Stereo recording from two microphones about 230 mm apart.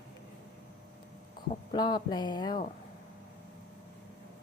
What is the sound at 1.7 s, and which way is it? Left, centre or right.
Speech, centre.